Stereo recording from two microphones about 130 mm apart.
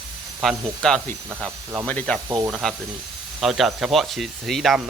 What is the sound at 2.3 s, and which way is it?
Speech, 20° right (ahead or behind).